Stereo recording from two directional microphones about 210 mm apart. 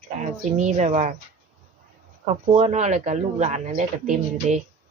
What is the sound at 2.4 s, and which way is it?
Speech, 35° right (ahead or behind).